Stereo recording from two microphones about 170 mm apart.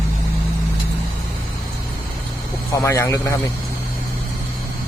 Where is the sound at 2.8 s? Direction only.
15° left (ahead or behind).